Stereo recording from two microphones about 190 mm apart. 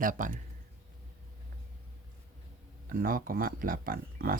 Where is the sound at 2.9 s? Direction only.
50° right (ahead or behind).